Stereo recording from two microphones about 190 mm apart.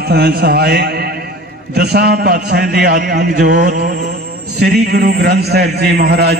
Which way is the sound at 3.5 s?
40° right (ahead or behind).